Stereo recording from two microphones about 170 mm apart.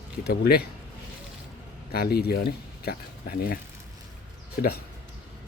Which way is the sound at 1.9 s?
65° left (ahead or behind).